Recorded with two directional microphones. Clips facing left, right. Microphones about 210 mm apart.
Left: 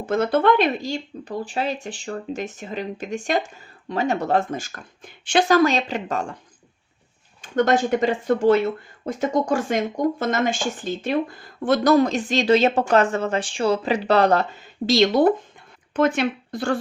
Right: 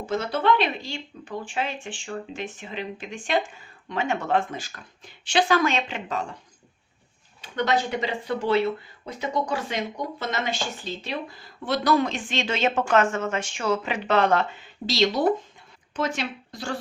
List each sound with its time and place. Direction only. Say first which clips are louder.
0.0 s speech: left 6 dB; 55° left (ahead or behind)
7.4 s speech: left 6 dB; 45° left (ahead or behind)